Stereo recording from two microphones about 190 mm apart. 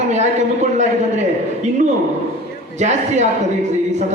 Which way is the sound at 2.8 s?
40° right (ahead or behind).